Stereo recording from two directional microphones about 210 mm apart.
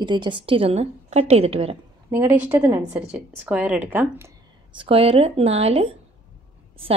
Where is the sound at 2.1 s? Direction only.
10° right (ahead or behind).